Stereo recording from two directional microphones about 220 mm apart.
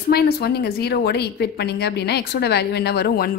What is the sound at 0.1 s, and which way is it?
A woman's voice, 45° left (ahead or behind).